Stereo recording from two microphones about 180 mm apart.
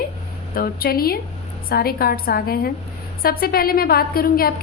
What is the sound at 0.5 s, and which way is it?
A woman's voice, 55° left (ahead or behind).